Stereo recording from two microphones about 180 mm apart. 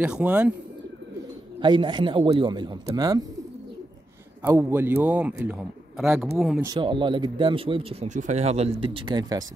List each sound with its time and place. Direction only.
0.0 s a man's voice: 5° right (ahead or behind)
1.6 s speech: 25° right (ahead or behind)
4.4 s a man's voice: 10° right (ahead or behind)
6.6 s speech: 25° right (ahead or behind)